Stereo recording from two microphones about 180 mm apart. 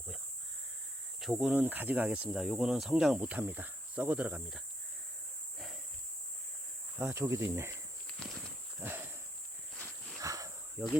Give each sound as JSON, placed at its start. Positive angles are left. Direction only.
{"t": 1.2, "sound": "speech", "side_deg": -5}
{"t": 7.0, "sound": "speech", "side_deg": -15}
{"t": 8.0, "sound": "horse", "side_deg": 0}
{"t": 8.8, "sound": "a sound", "side_deg": -10}
{"t": 9.7, "sound": "a sound", "side_deg": 10}
{"t": 10.2, "sound": "dog", "side_deg": -20}